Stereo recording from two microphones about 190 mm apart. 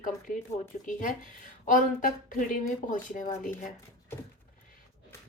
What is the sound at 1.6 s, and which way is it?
Speech, 45° left (ahead or behind).